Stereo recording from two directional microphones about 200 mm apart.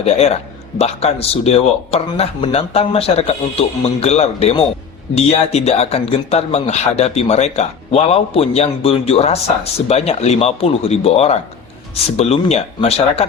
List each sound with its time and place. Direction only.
0.0 s a man's voice: 30° left (ahead or behind)